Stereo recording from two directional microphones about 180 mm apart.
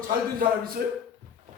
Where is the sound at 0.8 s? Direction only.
60° right (ahead or behind).